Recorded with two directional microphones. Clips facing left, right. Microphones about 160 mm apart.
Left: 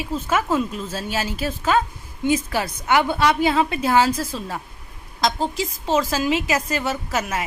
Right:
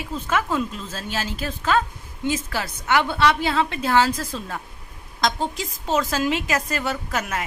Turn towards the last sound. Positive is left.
turn(degrees=5)  # may be behind; listen again after turning